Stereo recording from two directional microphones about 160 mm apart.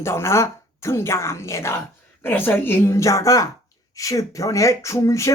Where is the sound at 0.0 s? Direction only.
15° left (ahead or behind).